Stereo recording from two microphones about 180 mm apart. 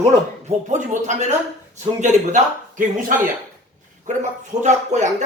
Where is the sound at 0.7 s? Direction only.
40° right (ahead or behind).